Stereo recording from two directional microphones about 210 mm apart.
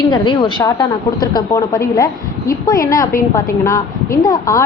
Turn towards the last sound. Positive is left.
turn(degrees=15)  # may be behind; listen again after turning